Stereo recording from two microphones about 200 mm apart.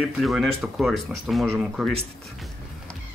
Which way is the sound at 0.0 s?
Centre (ahead or behind).